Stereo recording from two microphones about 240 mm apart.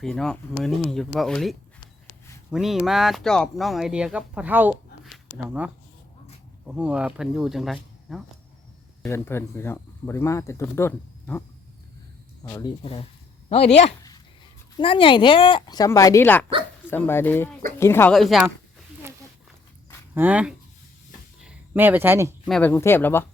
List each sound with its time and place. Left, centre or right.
0.0 s speech: centre
9.0 s speech: centre
20.1 s speech: centre
22.4 s speech: centre